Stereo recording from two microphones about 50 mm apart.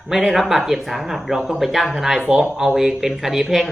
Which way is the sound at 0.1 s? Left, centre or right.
Centre.